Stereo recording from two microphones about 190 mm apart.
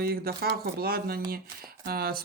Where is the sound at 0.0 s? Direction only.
50° right (ahead or behind).